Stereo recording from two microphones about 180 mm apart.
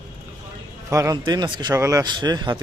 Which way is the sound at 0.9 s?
20° right (ahead or behind).